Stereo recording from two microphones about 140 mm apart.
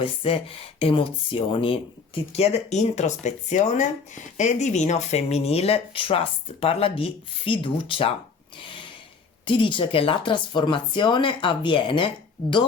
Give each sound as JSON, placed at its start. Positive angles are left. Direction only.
{"t": 0.0, "sound": "speech", "side_deg": 40}
{"t": 8.6, "sound": "a sound", "side_deg": 35}
{"t": 9.5, "sound": "speech", "side_deg": 35}